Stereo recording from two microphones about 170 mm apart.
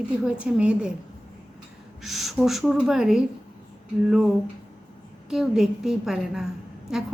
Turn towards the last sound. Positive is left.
turn(degrees=-5)  # may be behind; listen again after turning